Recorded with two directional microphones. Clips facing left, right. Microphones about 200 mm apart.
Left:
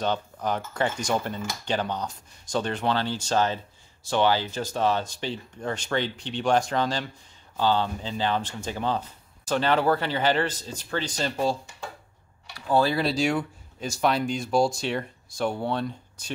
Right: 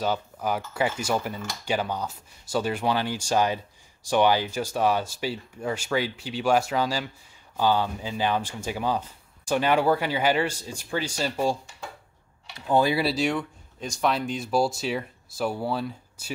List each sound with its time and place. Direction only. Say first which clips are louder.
0.0 s speech: even; 5° right (ahead or behind)
12.5 s speech: right 1 dB; 20° right (ahead or behind)
13.0 s speech: left 1 dB; centre (ahead or behind)